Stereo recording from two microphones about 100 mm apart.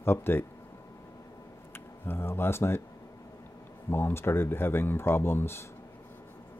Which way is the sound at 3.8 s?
25° left (ahead or behind).